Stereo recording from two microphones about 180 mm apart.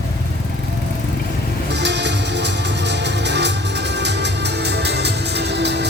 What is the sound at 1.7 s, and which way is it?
Music, 75° right (ahead or behind).